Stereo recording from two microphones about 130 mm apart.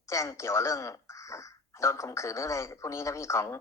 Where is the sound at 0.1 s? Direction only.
25° left (ahead or behind).